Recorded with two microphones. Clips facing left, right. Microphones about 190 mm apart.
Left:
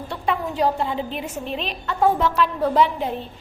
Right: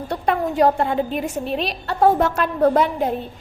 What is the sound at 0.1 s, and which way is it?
A woman's voice, 45° right (ahead or behind).